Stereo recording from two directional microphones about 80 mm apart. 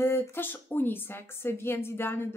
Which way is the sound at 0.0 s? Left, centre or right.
Left.